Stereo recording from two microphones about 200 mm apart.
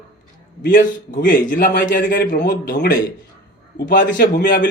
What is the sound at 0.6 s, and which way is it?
A man's voice, 45° left (ahead or behind).